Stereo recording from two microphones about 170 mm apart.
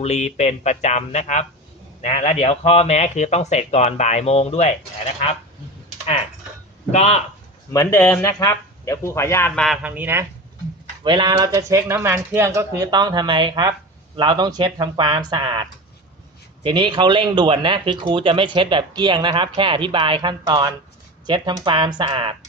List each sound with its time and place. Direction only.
0.0 s speech: 40° left (ahead or behind)
6.9 s speech: 40° left (ahead or behind)
7.7 s speech: 15° left (ahead or behind)
9.8 s speech: 10° right (ahead or behind)
11.0 s speech: 25° right (ahead or behind)
16.6 s speech: 30° right (ahead or behind)